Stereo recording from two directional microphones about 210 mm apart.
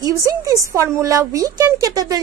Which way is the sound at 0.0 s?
15° right (ahead or behind).